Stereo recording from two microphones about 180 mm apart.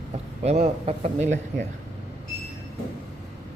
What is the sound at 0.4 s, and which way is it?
Speech, 35° right (ahead or behind).